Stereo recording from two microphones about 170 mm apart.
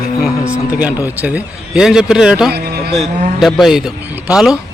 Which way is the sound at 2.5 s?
70° right (ahead or behind).